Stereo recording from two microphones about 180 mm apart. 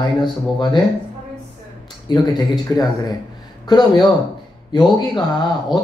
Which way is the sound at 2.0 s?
25° left (ahead or behind).